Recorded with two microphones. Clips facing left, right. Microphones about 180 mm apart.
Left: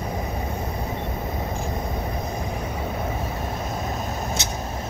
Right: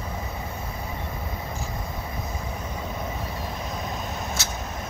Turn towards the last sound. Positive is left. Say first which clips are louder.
# left 3 dB
turn(degrees=20)  # may be behind; listen again after turning